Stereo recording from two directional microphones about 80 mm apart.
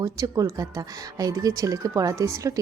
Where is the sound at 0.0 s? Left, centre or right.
Right.